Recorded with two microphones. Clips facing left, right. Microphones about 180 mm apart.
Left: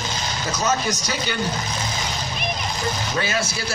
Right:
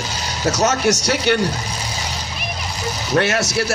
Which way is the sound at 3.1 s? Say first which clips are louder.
Right 11 dB; 75° right (ahead or behind).